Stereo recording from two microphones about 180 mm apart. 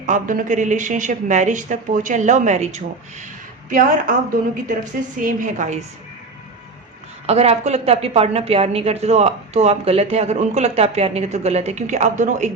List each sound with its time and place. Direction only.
0.0 s speech: 45° right (ahead or behind)
5.2 s speech: 45° right (ahead or behind)
7.3 s a woman's voice: 35° right (ahead or behind)